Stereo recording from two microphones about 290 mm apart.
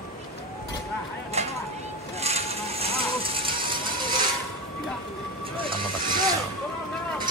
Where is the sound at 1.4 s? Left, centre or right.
Right.